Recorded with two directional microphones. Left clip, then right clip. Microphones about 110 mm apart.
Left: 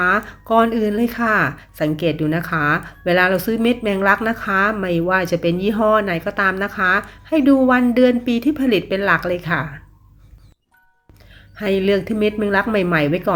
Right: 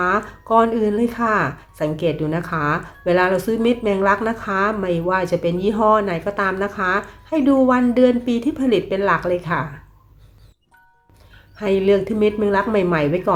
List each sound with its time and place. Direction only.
0.0 s speech: 20° left (ahead or behind)
11.5 s speech: 25° left (ahead or behind)